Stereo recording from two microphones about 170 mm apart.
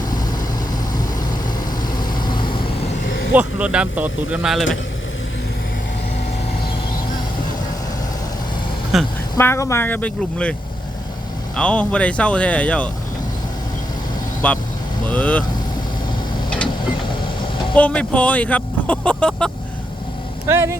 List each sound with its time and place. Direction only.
2.0 s vehicle: 25° left (ahead or behind)
3.0 s vehicle: 55° left (ahead or behind)
3.3 s speech: 5° right (ahead or behind)
8.9 s a woman's voice: centre (ahead or behind)
9.4 s speech: 15° left (ahead or behind)
11.5 s speech: 5° left (ahead or behind)
14.4 s speech: 10° left (ahead or behind)
17.7 s speech: 10° left (ahead or behind)
20.5 s speech: 15° right (ahead or behind)